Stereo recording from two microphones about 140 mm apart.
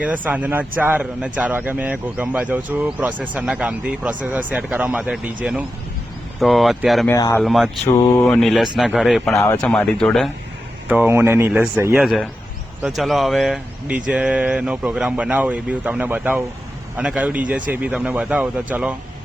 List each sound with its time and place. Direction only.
0.0 s a man's voice: 10° right (ahead or behind)
7.1 s speech: 25° left (ahead or behind)
7.4 s speech: centre (ahead or behind)
7.9 s speech: 25° left (ahead or behind)
8.3 s speech: centre (ahead or behind)
10.8 s a man's voice: 10° right (ahead or behind)
11.9 s a man's voice: centre (ahead or behind)